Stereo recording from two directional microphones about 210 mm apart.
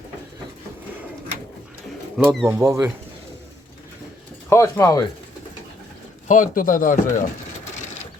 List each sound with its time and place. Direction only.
2.1 s speech: centre (ahead or behind)
2.5 s speech: 10° right (ahead or behind)
4.4 s speech: 15° left (ahead or behind)
6.2 s speech: 40° left (ahead or behind)